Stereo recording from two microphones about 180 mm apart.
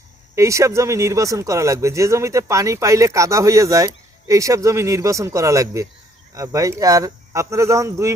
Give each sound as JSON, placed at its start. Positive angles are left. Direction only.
{"t": 0.3, "sound": "speech", "side_deg": -15}